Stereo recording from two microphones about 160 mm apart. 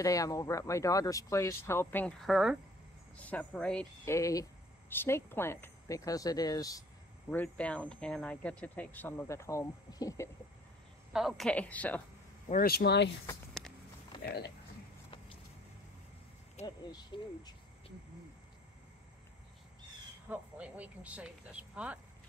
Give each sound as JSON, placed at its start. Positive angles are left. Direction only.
{"t": 0.0, "sound": "speech", "side_deg": 20}
{"t": 2.2, "sound": "speech", "side_deg": 0}
{"t": 4.0, "sound": "speech", "side_deg": 20}
{"t": 7.2, "sound": "speech", "side_deg": 10}
{"t": 11.1, "sound": "speech", "side_deg": 0}
{"t": 12.6, "sound": "speech", "side_deg": 85}
{"t": 14.2, "sound": "speech", "side_deg": 80}
{"t": 16.6, "sound": "speech", "side_deg": 25}
{"t": 20.2, "sound": "speech", "side_deg": -10}